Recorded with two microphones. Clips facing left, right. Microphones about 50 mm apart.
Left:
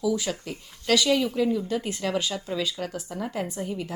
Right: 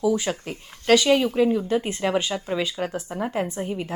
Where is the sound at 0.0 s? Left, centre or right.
Right.